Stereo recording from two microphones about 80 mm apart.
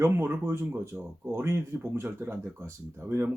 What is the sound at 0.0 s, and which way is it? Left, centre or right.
Speech, right.